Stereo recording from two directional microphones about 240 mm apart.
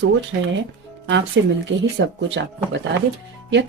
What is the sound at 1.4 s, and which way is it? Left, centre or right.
Speech, right.